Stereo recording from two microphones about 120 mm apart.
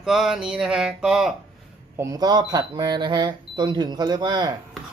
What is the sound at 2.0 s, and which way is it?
Speech, 30° right (ahead or behind).